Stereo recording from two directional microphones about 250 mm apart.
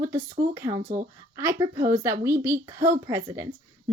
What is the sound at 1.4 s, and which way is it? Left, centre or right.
Speech, centre.